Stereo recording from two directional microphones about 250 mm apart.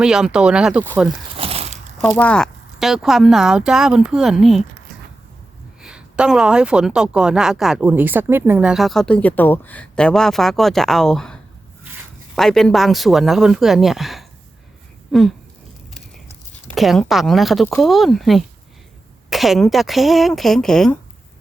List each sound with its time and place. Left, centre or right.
0.0 s speech: centre
1.4 s a sound: right
2.0 s speech: centre
5.8 s speech: centre
12.4 s speech: centre
15.1 s a sound: centre
16.7 s speech: centre